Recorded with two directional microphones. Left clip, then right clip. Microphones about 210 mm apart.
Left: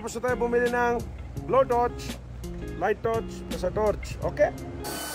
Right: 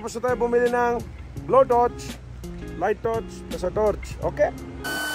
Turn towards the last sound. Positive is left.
turn(degrees=0)  # may be behind; listen again after turning